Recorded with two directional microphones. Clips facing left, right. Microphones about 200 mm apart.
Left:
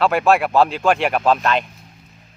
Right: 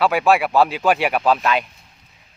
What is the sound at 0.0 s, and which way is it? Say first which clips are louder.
Speech: left 1 dB; centre (ahead or behind).